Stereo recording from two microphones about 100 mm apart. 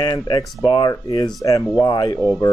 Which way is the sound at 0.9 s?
40° left (ahead or behind).